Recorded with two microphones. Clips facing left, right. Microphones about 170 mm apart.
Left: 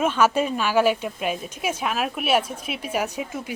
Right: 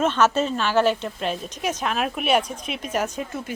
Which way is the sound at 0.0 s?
10° left (ahead or behind).